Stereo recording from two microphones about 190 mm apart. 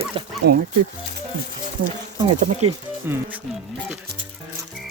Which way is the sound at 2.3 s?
40° right (ahead or behind).